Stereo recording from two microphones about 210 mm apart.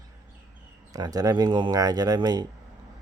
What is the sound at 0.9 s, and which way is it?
Speech, 15° right (ahead or behind).